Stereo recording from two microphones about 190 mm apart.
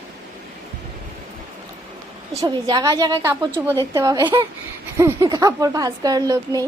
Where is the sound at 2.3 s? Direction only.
20° right (ahead or behind).